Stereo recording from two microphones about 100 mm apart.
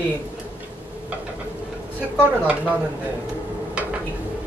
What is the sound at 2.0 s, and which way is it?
Speech, 15° right (ahead or behind).